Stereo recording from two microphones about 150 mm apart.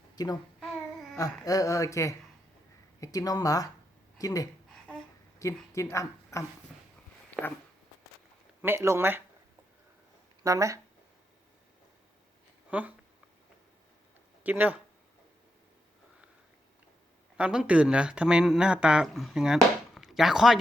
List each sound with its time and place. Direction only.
0.2 s a woman's voice: 25° left (ahead or behind)
1.5 s a woman's voice: 20° left (ahead or behind)
7.4 s a sound: 5° right (ahead or behind)
8.6 s speech: 15° right (ahead or behind)
10.4 s speech: 20° right (ahead or behind)
12.7 s speech: 10° right (ahead or behind)
14.4 s speech: 10° right (ahead or behind)
17.3 s speech: 5° right (ahead or behind)